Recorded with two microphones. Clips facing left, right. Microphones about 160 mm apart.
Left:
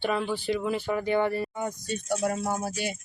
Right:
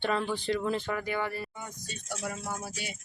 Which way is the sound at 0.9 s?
30° left (ahead or behind).